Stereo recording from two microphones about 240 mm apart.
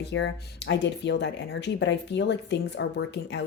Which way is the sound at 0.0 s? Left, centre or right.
Left.